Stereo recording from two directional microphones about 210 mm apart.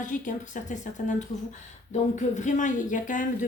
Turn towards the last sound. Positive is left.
turn(degrees=40)  # may be behind; listen again after turning